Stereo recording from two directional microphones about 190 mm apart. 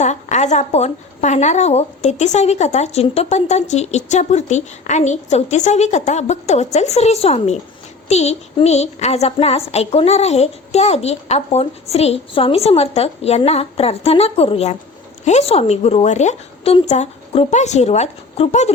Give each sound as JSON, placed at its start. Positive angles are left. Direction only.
{"t": 0.0, "sound": "a woman's voice", "side_deg": 35}